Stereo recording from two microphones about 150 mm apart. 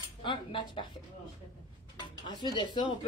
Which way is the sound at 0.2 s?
30° left (ahead or behind).